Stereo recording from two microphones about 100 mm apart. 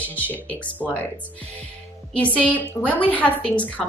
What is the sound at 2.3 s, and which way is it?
Speech, 15° left (ahead or behind).